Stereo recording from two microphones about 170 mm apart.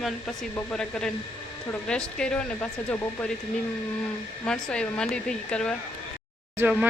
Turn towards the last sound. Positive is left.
turn(degrees=-5)  # may be behind; listen again after turning